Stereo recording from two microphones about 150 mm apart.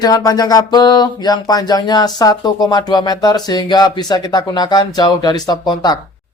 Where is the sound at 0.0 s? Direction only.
25° left (ahead or behind).